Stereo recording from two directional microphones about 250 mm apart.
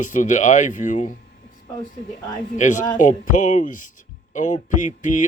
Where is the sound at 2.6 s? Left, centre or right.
Left.